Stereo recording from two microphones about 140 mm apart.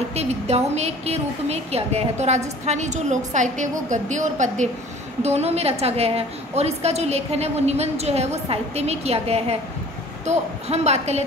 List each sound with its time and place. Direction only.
0.1 s a woman's voice: 50° right (ahead or behind)
5.2 s a woman's voice: 50° right (ahead or behind)